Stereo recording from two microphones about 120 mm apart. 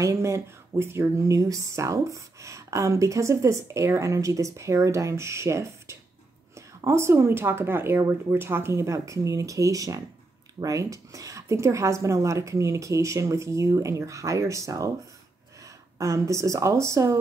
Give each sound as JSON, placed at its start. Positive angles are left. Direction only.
{"t": 0.0, "sound": "speech", "side_deg": -25}
{"t": 16.0, "sound": "speech", "side_deg": -25}